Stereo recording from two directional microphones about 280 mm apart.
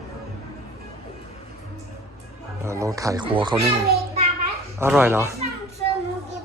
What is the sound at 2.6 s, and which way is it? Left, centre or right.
Speech, centre.